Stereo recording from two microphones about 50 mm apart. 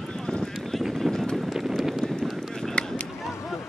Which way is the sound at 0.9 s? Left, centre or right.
Centre.